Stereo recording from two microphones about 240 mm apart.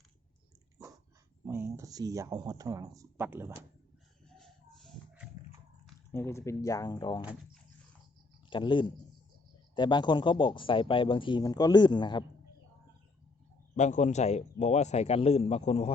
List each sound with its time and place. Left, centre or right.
1.5 s speech: centre
4.4 s a sound: centre
5.8 s speech: centre
8.4 s speech: centre
13.7 s speech: left